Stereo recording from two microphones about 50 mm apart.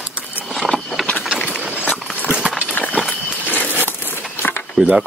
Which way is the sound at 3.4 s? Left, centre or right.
Left.